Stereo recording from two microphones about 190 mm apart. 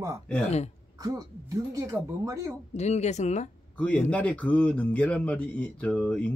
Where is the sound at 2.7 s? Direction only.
35° left (ahead or behind).